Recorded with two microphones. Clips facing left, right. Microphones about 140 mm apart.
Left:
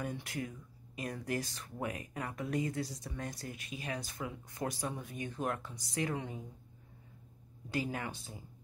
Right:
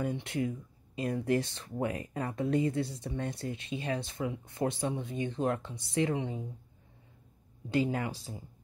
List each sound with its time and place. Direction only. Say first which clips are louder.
0.0 s speech: right 7 dB; 25° right (ahead or behind)
7.7 s speech: right 7 dB; 25° right (ahead or behind)